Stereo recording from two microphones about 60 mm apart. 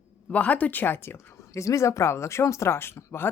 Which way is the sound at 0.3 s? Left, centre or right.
Left.